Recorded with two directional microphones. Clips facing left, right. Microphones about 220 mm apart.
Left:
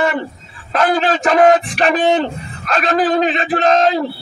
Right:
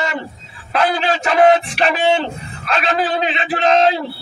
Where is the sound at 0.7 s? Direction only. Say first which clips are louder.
Left 2 dB; 45° left (ahead or behind).